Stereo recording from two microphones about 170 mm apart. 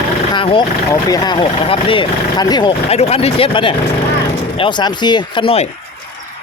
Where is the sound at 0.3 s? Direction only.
30° left (ahead or behind).